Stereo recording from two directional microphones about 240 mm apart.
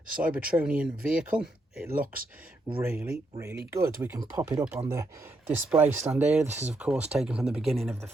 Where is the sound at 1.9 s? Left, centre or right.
Right.